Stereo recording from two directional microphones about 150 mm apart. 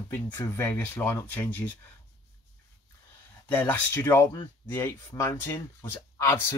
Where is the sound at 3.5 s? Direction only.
10° left (ahead or behind).